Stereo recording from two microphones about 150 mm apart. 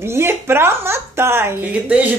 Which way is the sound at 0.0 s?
15° right (ahead or behind).